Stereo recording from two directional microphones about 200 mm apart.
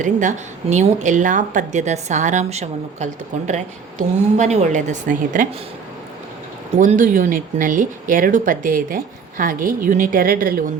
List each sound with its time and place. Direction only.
0.0 s a woman's voice: 40° right (ahead or behind)
6.7 s a woman's voice: 40° right (ahead or behind)